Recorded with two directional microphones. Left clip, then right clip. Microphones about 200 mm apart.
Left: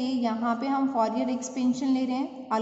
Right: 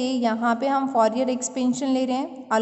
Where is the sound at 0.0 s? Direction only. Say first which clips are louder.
Right 5 dB; 40° right (ahead or behind).